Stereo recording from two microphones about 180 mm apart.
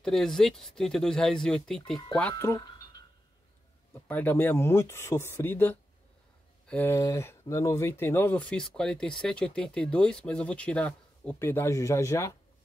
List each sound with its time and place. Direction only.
0.0 s speech: 5° left (ahead or behind)
2.3 s speech: 15° left (ahead or behind)
4.1 s speech: 10° left (ahead or behind)